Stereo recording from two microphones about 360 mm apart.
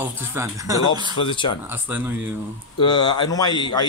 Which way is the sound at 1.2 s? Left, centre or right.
Centre.